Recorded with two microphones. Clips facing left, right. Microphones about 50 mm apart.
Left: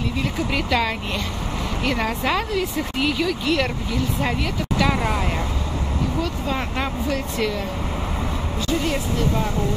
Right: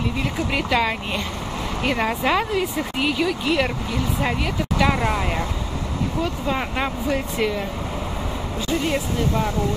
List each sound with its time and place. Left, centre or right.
0.5 s speech: centre
8.8 s speech: centre